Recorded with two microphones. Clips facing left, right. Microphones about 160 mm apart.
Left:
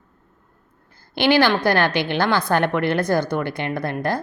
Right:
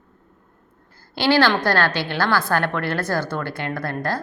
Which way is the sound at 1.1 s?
15° left (ahead or behind).